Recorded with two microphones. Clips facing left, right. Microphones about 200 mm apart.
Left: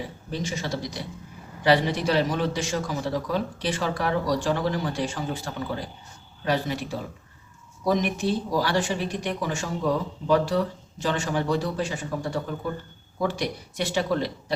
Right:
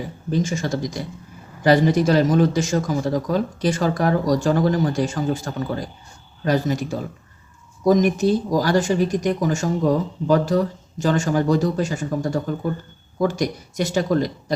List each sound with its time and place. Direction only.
0.3 s speech: 45° right (ahead or behind)